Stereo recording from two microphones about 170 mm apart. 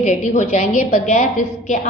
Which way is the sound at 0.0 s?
45° left (ahead or behind).